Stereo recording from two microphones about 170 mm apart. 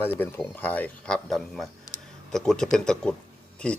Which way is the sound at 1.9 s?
20° left (ahead or behind).